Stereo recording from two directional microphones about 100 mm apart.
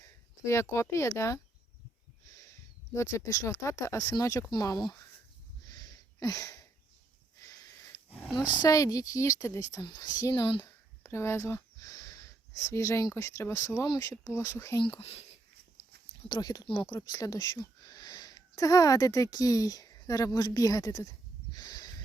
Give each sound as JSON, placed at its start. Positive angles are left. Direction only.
{"t": 0.0, "sound": "speech", "side_deg": 30}
{"t": 2.9, "sound": "speech", "side_deg": 30}
{"t": 5.6, "sound": "a sound", "side_deg": 40}
{"t": 8.3, "sound": "speech", "side_deg": -5}
{"t": 8.5, "sound": "speech", "side_deg": 35}
{"t": 9.8, "sound": "speech", "side_deg": 45}
{"t": 10.6, "sound": "speech", "side_deg": 25}
{"t": 16.3, "sound": "speech", "side_deg": 40}